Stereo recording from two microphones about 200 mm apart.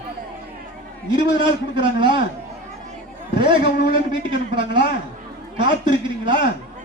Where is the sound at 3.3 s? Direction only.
25° right (ahead or behind).